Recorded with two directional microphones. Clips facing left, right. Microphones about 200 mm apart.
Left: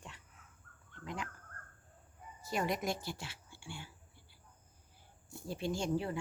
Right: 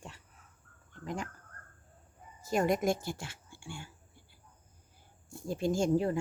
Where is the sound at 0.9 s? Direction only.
45° right (ahead or behind).